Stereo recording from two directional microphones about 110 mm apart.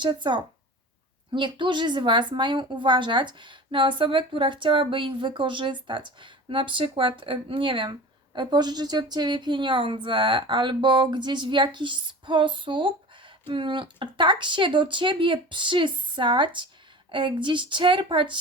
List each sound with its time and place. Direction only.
0.0 s a woman's voice: 45° right (ahead or behind)